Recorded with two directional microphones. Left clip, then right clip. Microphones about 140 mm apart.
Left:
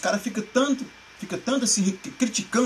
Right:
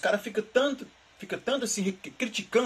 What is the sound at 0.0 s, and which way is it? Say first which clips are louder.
A man's voice: left 1 dB; 5° left (ahead or behind).